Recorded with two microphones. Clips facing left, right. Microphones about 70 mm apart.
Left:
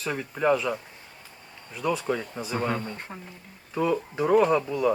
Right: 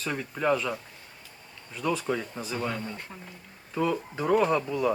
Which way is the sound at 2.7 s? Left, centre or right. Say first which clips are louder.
Left 3 dB; left.